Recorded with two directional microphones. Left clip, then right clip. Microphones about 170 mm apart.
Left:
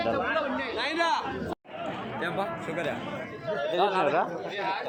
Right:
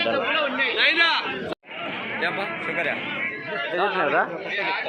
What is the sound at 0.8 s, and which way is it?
Speech, 80° left.